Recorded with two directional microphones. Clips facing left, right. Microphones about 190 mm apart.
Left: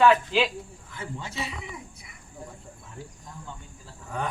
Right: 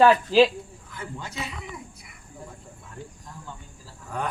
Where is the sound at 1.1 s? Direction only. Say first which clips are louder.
Left 1 dB; 5° left (ahead or behind).